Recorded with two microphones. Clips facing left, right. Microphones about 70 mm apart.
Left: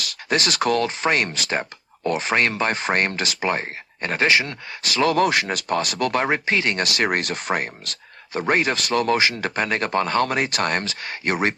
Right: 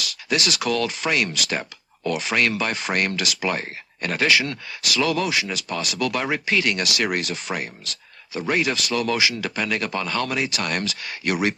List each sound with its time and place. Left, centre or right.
0.0 s speech: left